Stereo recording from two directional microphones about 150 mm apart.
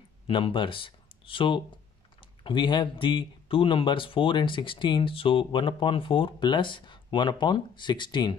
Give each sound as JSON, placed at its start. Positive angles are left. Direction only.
{"t": 0.3, "sound": "speech", "side_deg": 35}